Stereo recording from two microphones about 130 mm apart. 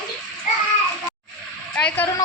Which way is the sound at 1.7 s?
10° left (ahead or behind).